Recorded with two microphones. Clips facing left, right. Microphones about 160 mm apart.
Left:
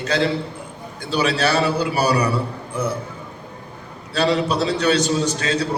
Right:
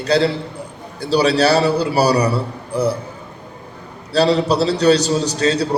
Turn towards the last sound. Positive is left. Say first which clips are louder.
# right 4 dB
turn(degrees=-35)  # may be behind; listen again after turning